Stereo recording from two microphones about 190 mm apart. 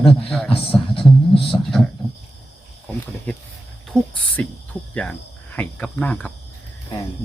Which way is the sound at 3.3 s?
5° left (ahead or behind).